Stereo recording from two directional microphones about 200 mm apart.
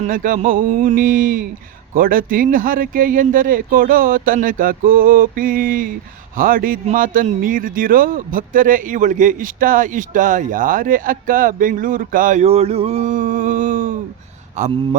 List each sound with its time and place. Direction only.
0.0 s speech: 45° right (ahead or behind)